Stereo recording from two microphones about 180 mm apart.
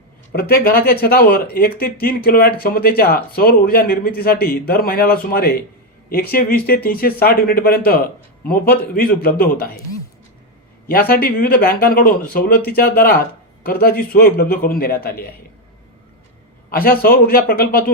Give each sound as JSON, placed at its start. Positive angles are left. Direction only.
{"t": 0.3, "sound": "speech", "side_deg": 55}
{"t": 11.1, "sound": "speech", "side_deg": 55}
{"t": 16.6, "sound": "speech", "side_deg": 55}